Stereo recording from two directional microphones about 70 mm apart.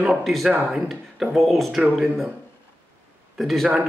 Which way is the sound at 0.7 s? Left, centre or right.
Centre.